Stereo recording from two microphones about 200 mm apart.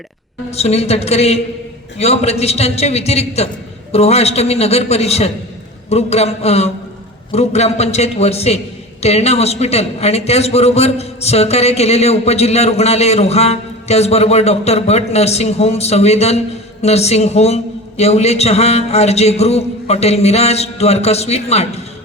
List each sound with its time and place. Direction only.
0.5 s a man's voice: 30° left (ahead or behind)